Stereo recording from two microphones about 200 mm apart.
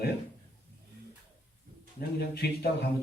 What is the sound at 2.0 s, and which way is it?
Speech, 55° left (ahead or behind).